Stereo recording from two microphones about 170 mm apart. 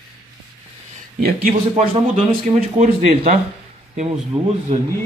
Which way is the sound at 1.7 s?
35° right (ahead or behind).